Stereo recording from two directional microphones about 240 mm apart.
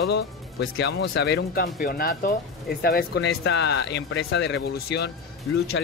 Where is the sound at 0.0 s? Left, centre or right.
Left.